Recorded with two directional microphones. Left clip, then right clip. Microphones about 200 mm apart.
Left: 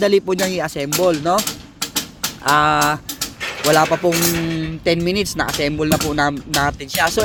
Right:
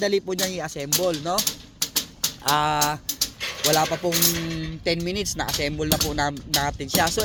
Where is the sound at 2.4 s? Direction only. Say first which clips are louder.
Left 7 dB; 5° left (ahead or behind).